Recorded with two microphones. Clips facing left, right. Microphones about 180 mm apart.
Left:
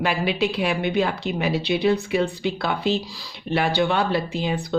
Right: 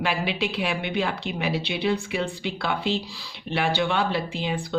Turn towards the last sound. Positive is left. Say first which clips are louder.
# left 3 dB
turn(degrees=45)  # may be behind; listen again after turning